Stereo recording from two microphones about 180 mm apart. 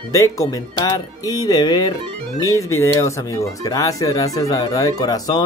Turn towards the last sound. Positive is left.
turn(degrees=20)  # may be behind; listen again after turning